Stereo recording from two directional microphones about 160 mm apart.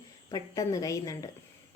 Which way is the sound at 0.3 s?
25° left (ahead or behind).